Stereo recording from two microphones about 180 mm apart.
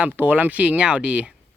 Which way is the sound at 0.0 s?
10° right (ahead or behind).